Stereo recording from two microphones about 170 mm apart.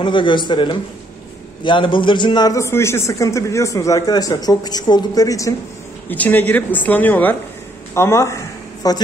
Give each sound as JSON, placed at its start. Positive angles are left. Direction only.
{"t": 0.0, "sound": "a man's voice", "side_deg": 30}